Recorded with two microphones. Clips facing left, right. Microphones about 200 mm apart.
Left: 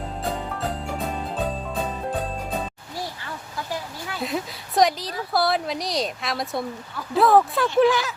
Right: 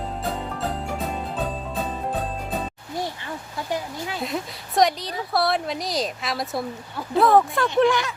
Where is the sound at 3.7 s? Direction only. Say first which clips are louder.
Right 5 dB; 20° right (ahead or behind).